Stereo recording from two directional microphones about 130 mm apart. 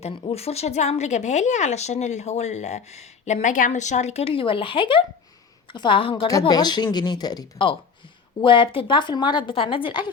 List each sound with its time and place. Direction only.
0.1 s a woman's voice: 50° left (ahead or behind)